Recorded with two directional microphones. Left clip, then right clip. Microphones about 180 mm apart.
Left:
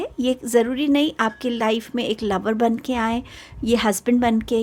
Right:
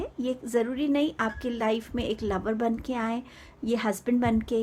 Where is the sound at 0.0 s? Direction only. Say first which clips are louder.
Left 8 dB; 40° left (ahead or behind).